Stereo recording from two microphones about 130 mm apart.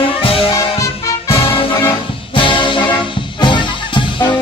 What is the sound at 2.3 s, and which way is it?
Music, 40° left (ahead or behind).